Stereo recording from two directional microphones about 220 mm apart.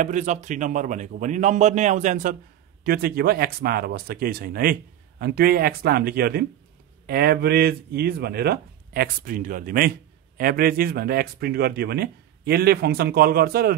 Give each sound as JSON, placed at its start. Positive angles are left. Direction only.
{"t": 0.0, "sound": "a man's voice", "side_deg": -35}